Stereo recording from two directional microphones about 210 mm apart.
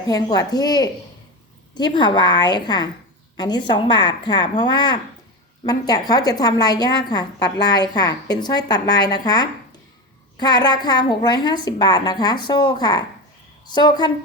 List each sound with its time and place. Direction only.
0.1 s a woman's voice: 20° left (ahead or behind)